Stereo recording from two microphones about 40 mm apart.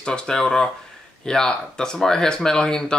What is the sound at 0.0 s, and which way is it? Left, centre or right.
Speech, centre.